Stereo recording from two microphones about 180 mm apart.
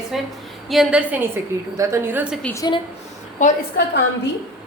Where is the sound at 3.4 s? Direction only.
45° left (ahead or behind).